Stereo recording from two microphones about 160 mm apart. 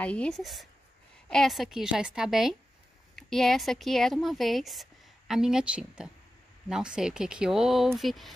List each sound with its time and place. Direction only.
0.0 s speech: 5° left (ahead or behind)